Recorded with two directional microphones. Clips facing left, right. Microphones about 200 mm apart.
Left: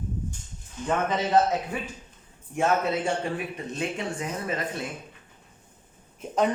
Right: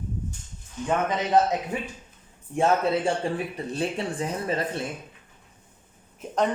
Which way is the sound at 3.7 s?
35° right (ahead or behind).